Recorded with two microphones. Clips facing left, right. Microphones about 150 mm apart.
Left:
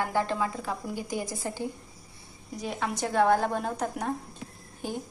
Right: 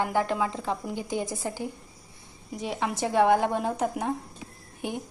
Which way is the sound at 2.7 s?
20° right (ahead or behind).